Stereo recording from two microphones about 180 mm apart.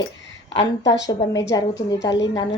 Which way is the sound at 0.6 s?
80° left.